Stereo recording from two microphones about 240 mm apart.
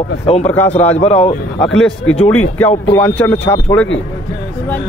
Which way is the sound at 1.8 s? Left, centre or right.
Centre.